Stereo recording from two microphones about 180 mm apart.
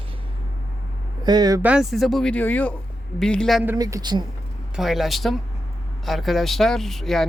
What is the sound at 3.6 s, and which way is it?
Speech, 15° right (ahead or behind).